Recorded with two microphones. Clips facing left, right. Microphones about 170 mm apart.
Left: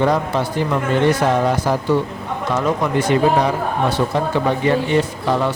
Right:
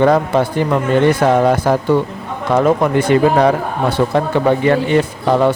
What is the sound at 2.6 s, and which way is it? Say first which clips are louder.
Speech: right 6 dB; 55° right (ahead or behind).